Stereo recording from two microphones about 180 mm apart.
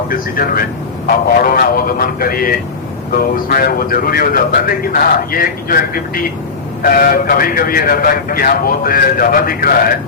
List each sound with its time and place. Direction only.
0.1 s speech: 50° left (ahead or behind)